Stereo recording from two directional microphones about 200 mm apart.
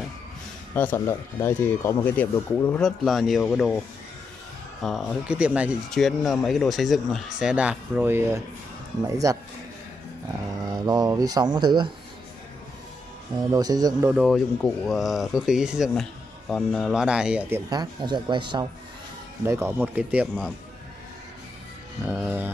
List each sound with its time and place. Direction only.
0.7 s speech: 10° left (ahead or behind)
4.8 s speech: 5° right (ahead or behind)
10.6 s speech: 20° right (ahead or behind)
13.5 s speech: 20° right (ahead or behind)
14.1 s speech: centre (ahead or behind)
17.6 s speech: 20° right (ahead or behind)
19.4 s speech: 10° right (ahead or behind)
22.0 s speech: 10° right (ahead or behind)